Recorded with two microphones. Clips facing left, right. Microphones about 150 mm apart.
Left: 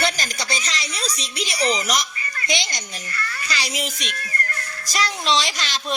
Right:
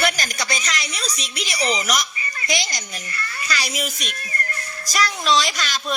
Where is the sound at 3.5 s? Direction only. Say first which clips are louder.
Right 2 dB; 25° left (ahead or behind).